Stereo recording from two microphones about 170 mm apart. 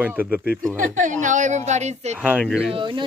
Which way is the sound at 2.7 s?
30° right (ahead or behind).